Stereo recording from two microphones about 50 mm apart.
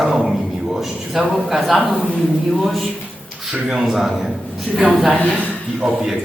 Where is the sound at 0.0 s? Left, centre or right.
Centre.